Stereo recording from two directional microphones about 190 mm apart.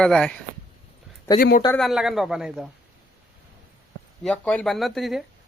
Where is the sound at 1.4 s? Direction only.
50° left (ahead or behind).